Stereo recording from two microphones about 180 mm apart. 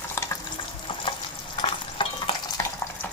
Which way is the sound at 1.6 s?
30° left (ahead or behind).